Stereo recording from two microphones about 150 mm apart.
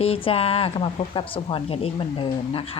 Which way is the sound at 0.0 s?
40° left (ahead or behind).